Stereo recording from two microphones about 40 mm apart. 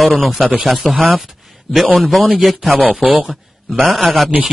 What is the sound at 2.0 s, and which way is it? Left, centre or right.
Speech, centre.